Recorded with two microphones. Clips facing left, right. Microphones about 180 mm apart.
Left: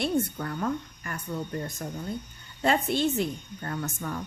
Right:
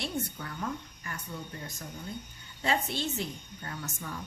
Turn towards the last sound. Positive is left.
turn(degrees=55)  # may be behind; listen again after turning